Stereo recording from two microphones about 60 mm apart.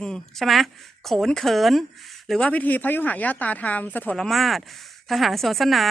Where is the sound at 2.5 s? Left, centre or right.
Left.